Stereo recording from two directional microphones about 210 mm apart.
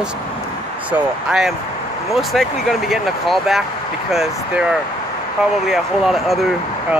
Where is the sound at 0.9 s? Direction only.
5° right (ahead or behind).